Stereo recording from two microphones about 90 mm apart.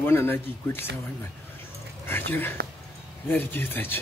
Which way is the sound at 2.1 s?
25° left (ahead or behind).